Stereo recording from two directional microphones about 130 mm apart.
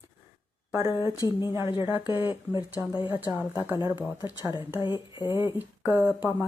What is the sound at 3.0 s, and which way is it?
Speech, 40° left (ahead or behind).